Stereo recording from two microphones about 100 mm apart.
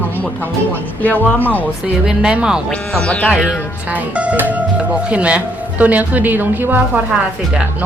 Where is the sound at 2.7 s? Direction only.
10° left (ahead or behind).